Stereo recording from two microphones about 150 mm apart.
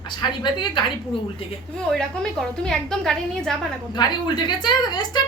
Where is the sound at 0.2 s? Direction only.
30° left (ahead or behind).